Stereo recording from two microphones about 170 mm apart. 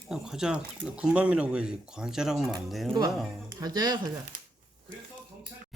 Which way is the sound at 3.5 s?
25° right (ahead or behind).